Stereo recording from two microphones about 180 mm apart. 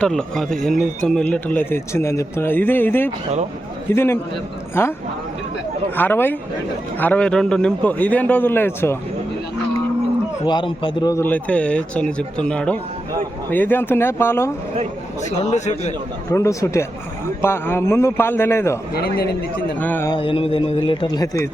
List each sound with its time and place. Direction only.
0.0 s speech: 5° left (ahead or behind)
6.0 s speech: 10° left (ahead or behind)
10.4 s speech: 25° left (ahead or behind)
15.4 s a man's voice: 40° left (ahead or behind)
16.3 s speech: 15° left (ahead or behind)
18.9 s a man's voice: 60° left (ahead or behind)
19.8 s speech: 10° left (ahead or behind)
20.1 s a man's voice: 30° left (ahead or behind)